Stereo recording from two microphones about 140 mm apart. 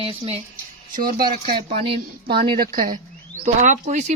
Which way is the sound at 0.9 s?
90° right.